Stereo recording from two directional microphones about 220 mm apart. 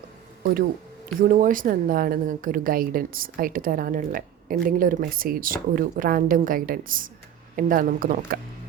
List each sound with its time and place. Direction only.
1.2 s speech: 35° right (ahead or behind)